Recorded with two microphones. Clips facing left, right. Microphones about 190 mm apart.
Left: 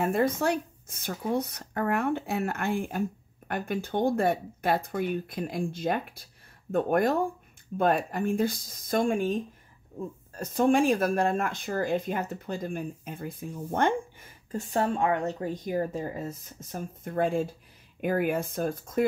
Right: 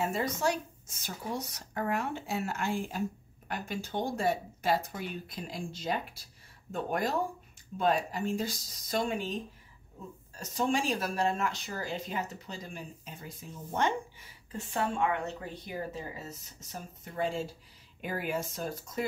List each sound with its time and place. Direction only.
0.0 s speech: 55° left (ahead or behind)